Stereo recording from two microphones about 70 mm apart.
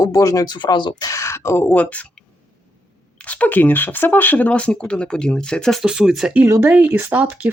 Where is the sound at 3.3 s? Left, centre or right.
Left.